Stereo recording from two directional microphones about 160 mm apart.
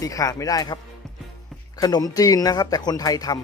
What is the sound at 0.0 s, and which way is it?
Speech, 20° left (ahead or behind).